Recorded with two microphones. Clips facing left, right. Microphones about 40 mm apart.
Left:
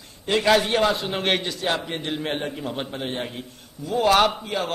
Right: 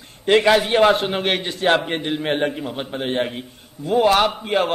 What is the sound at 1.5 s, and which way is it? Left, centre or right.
Speech, right.